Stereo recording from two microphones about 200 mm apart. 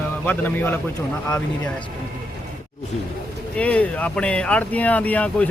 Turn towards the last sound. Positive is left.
turn(degrees=5)  # may be behind; listen again after turning